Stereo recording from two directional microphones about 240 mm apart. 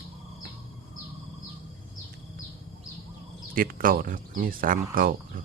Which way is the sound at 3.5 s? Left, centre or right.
Right.